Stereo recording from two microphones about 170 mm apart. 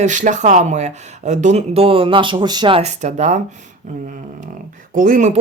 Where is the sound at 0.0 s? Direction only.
45° right (ahead or behind).